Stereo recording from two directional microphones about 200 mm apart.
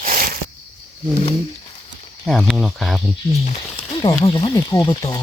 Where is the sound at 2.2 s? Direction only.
Centre (ahead or behind).